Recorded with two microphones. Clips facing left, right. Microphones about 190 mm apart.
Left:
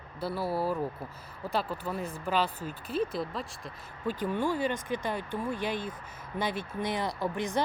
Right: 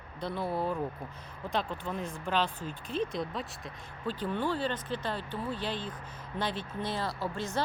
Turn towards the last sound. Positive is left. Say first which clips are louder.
# left 3 dB
turn(degrees=15)  # may be behind; listen again after turning